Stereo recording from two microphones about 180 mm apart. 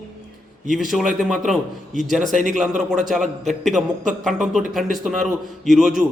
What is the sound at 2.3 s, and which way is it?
Speech, 45° right (ahead or behind).